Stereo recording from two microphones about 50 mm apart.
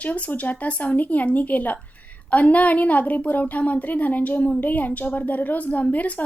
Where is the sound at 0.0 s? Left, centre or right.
Left.